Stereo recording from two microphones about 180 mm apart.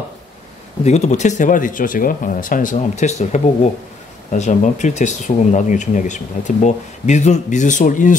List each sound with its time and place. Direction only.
0.8 s speech: 40° left (ahead or behind)